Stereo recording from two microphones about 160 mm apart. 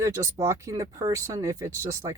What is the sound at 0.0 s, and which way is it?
Speech, 20° right (ahead or behind).